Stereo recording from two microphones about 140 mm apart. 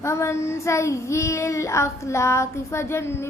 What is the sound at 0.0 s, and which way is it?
Child singing, 20° left (ahead or behind).